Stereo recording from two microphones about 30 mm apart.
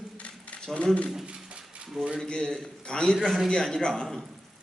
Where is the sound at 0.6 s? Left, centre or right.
Left.